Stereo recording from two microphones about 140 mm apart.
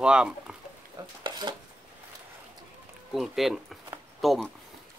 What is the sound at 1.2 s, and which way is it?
Dishes, 30° right (ahead or behind).